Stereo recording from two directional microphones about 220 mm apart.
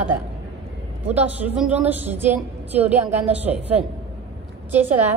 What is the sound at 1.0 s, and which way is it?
A woman's voice, 5° right (ahead or behind).